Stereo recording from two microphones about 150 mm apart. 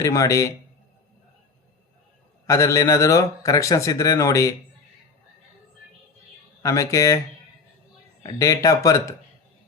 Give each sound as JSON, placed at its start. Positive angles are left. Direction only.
{"t": 0.0, "sound": "speech", "side_deg": 20}
{"t": 2.5, "sound": "speech", "side_deg": 20}
{"t": 6.6, "sound": "speech", "side_deg": 20}
{"t": 8.3, "sound": "speech", "side_deg": 20}